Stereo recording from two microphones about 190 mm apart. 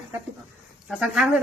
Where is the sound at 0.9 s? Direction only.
5° right (ahead or behind).